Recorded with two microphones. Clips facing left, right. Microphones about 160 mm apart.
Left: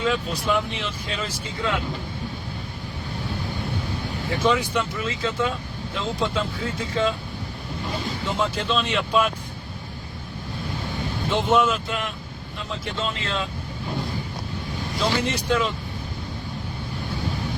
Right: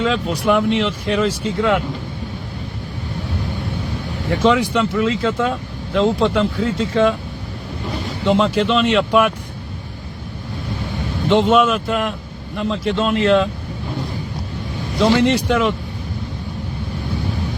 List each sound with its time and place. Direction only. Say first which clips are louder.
0.0 s speech: right 6 dB; 70° right (ahead or behind)
4.4 s speech: right 7 dB; 90° right
8.2 s speech: right 12 dB; 85° right
11.3 s speech: right 7 dB; 90° right; by 12.1 s 65° right (ahead or behind)
12.5 s speech: right 11 dB; 80° right
14.9 s speech: right 10 dB; 75° right (ahead or behind)